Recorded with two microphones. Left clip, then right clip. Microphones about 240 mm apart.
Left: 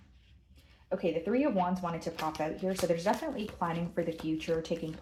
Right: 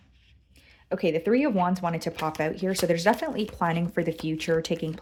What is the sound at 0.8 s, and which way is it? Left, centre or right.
Speech, right.